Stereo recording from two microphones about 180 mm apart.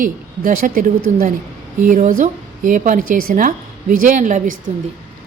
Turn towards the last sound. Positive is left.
turn(degrees=-45)  # may be behind; listen again after turning